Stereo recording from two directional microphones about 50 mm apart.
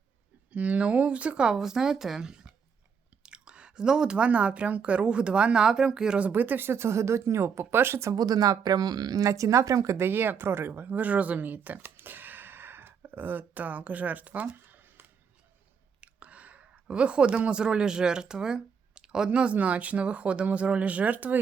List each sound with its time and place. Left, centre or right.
0.5 s speech: right
6.1 s speech: right
6.7 s speech: right
9.3 s speech: right
10.0 s speech: right
16.0 s speech: right